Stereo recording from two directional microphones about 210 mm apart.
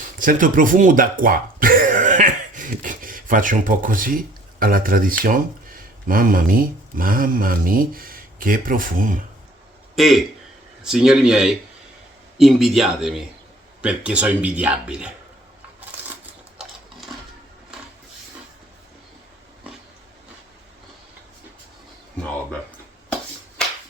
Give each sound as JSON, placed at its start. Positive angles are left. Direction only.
{"t": 0.0, "sound": "speech", "side_deg": -40}
{"t": 9.9, "sound": "a man's voice", "side_deg": 0}
{"t": 16.6, "sound": "sewing machine", "side_deg": 0}
{"t": 23.6, "sound": "a sound", "side_deg": 5}